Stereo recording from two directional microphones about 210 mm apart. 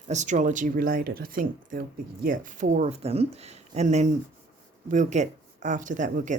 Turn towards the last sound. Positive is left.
turn(degrees=-35)  # may be behind; listen again after turning